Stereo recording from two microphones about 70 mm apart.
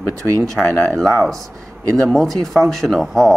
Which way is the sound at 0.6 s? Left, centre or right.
Centre.